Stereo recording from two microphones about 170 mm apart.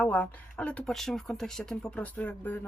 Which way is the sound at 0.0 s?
10° left (ahead or behind).